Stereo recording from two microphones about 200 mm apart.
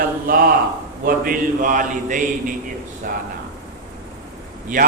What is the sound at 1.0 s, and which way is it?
A man's voice, 45° right (ahead or behind).